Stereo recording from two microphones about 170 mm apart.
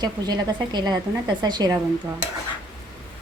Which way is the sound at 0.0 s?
25° right (ahead or behind).